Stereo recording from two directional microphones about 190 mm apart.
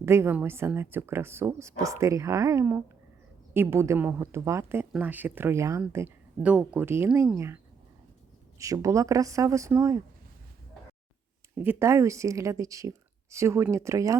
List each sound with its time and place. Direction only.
0.0 s speech: 15° right (ahead or behind)
11.5 s speech: 10° right (ahead or behind)